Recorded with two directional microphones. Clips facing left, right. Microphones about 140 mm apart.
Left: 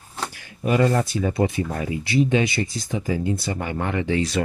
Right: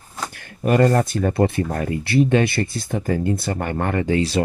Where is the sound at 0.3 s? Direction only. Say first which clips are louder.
Right 4 dB; 55° right (ahead or behind).